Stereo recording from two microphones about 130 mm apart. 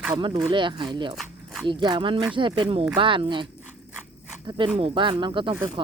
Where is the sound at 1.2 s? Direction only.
Centre (ahead or behind).